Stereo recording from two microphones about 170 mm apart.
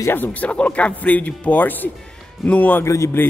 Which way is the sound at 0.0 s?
10° left (ahead or behind).